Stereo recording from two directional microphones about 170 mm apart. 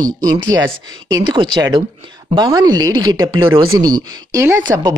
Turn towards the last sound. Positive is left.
turn(degrees=-20)  # may be behind; listen again after turning